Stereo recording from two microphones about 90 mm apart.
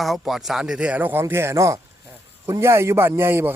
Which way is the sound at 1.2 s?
30° right (ahead or behind).